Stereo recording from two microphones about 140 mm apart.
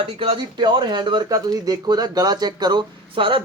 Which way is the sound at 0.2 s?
35° right (ahead or behind).